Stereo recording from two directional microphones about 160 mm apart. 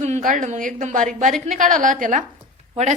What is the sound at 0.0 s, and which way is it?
A woman's voice, 50° right (ahead or behind).